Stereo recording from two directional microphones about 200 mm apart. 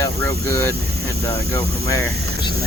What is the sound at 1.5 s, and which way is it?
Speech, 15° left (ahead or behind).